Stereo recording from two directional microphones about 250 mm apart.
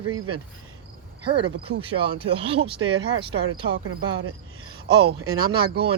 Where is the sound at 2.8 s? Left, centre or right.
Right.